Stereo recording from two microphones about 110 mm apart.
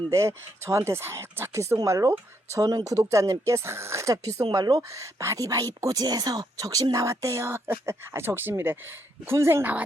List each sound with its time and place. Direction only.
0.1 s speech: 25° right (ahead or behind)